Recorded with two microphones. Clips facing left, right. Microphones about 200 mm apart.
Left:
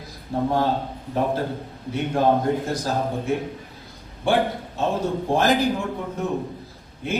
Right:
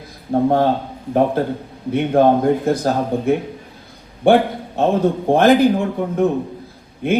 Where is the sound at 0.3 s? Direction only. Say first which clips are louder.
Right 8 dB; 55° right (ahead or behind).